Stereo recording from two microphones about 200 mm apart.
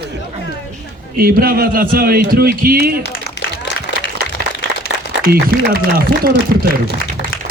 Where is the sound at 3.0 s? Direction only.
55° left (ahead or behind).